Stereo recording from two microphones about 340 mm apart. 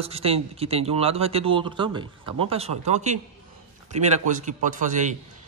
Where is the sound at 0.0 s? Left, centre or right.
Centre.